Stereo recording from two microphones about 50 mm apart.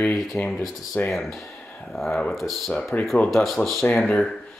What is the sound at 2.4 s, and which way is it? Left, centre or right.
Speech, centre.